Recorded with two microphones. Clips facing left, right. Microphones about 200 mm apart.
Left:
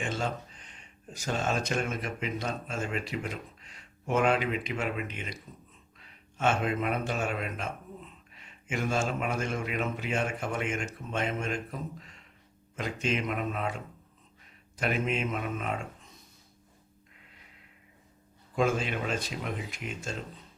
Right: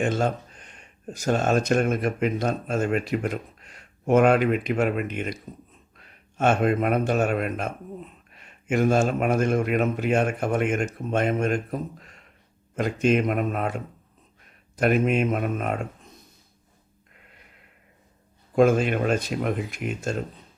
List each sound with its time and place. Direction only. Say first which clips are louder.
0.0 s speech: right 9 dB; 50° right (ahead or behind)
18.5 s speech: right 9 dB; 55° right (ahead or behind)